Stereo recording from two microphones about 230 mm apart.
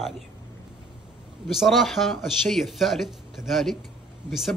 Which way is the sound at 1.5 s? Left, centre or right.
Centre.